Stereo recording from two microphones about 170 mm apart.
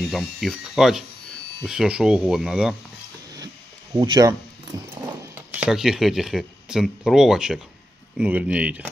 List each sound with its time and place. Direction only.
0.1 s speech: centre (ahead or behind)
3.9 s speech: 20° right (ahead or behind)
5.3 s speech: 10° right (ahead or behind)